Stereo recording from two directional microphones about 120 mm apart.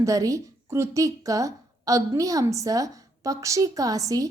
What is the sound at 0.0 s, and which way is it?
A woman's voice, 30° right (ahead or behind).